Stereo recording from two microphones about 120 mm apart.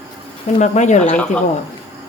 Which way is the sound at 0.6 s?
75° left (ahead or behind).